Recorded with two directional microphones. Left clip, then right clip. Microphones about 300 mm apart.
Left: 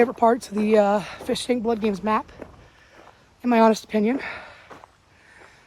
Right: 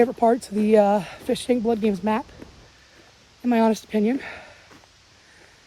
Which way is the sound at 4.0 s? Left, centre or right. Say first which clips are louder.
Even; left.